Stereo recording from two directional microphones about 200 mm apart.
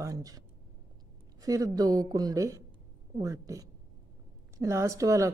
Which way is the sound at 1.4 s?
15° right (ahead or behind).